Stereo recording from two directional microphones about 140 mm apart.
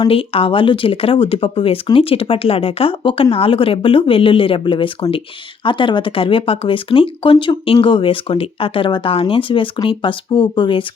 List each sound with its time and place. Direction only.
0.1 s speech: 40° left (ahead or behind)